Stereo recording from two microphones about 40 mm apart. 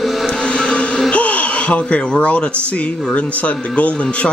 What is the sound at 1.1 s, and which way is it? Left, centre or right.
A woman's voice, left.